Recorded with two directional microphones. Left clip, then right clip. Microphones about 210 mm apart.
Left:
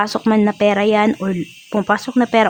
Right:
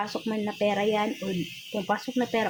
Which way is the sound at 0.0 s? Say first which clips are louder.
Left 14 dB; 45° left (ahead or behind).